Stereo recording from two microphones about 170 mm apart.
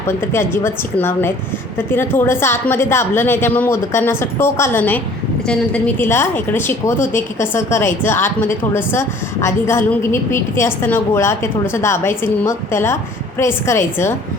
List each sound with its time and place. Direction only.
0.2 s a woman's voice: 15° left (ahead or behind)